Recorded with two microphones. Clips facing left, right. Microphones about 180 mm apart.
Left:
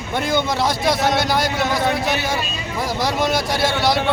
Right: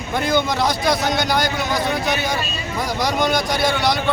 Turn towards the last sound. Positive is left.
turn(degrees=0)  # may be behind; listen again after turning